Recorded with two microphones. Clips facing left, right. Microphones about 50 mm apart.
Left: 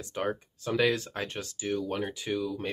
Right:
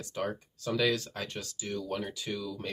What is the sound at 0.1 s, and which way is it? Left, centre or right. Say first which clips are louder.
Speech: left 3 dB; left.